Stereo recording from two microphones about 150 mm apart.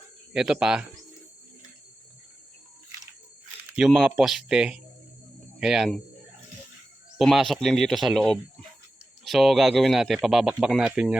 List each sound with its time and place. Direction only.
0.3 s speech: 5° right (ahead or behind)
3.8 s speech: 5° right (ahead or behind)
7.2 s speech: centre (ahead or behind)